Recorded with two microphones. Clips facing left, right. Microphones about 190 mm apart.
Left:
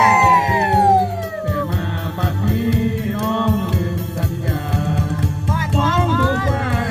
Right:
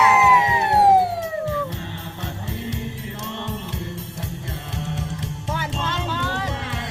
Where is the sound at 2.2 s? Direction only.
65° left (ahead or behind).